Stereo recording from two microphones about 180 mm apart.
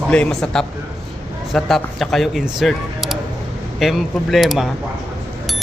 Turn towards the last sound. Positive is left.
turn(degrees=0)  # may be behind; listen again after turning